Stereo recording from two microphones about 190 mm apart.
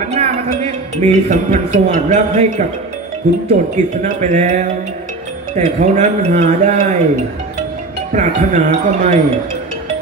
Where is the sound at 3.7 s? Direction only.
40° right (ahead or behind).